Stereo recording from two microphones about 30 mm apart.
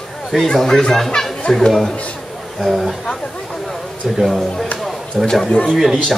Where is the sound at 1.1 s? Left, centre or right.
Left.